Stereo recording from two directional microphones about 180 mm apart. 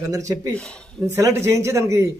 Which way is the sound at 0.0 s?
20° right (ahead or behind).